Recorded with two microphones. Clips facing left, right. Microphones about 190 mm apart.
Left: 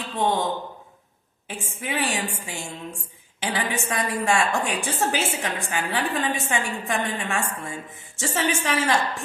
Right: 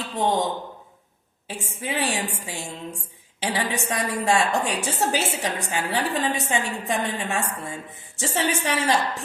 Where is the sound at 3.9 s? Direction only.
30° right (ahead or behind).